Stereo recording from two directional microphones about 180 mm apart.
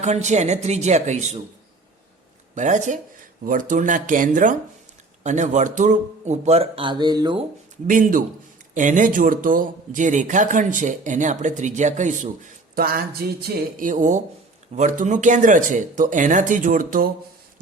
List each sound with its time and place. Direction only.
0.0 s speech: 40° right (ahead or behind)
2.6 s speech: 45° right (ahead or behind); by 7.4 s 25° right (ahead or behind)
7.9 s speech: 45° right (ahead or behind)
13.2 s a sound: 55° right (ahead or behind)
13.7 s speech: 45° right (ahead or behind)